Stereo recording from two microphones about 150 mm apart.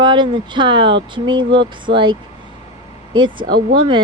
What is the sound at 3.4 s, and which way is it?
Speech, 90° right.